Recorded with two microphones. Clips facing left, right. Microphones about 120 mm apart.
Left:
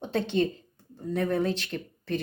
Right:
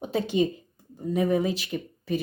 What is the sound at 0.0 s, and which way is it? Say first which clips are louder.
Speech: right 2 dB; 10° right (ahead or behind).